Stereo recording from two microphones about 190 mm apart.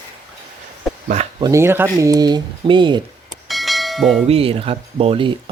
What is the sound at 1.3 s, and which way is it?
Speech, 20° right (ahead or behind).